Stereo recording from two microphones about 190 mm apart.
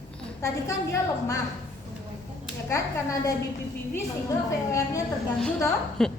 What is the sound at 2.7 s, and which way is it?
Speech, 15° left (ahead or behind).